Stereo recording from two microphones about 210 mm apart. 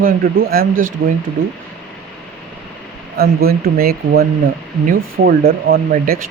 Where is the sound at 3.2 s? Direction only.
45° right (ahead or behind).